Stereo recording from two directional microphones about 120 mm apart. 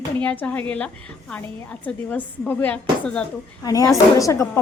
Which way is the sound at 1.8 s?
15° left (ahead or behind).